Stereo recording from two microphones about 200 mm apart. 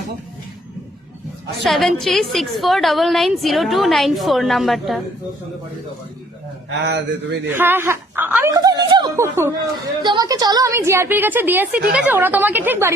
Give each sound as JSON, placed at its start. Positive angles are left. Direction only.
{"t": 1.6, "sound": "a woman's voice", "side_deg": 0}
{"t": 6.7, "sound": "speech", "side_deg": -60}
{"t": 7.4, "sound": "a woman's voice", "side_deg": -10}